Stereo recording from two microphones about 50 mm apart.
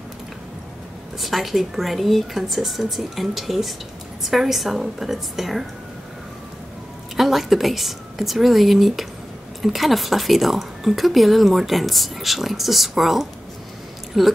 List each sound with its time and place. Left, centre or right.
1.2 s speech: centre
7.2 s speech: centre